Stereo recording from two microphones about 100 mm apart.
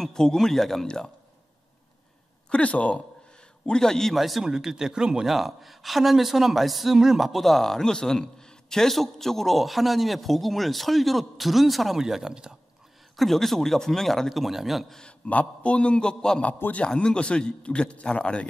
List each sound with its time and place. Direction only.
0.0 s a man's voice: 5° left (ahead or behind)
2.5 s a man's voice: 15° left (ahead or behind)
16.5 s a man's voice: 20° left (ahead or behind)
16.8 s a man's voice: 10° left (ahead or behind)